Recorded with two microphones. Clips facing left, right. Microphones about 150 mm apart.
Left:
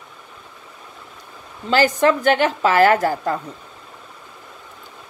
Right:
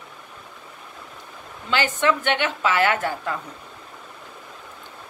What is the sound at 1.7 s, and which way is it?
A woman's voice, 40° left (ahead or behind).